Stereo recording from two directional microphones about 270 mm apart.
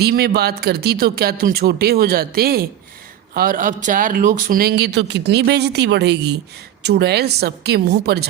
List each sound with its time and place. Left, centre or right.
0.0 s speech: right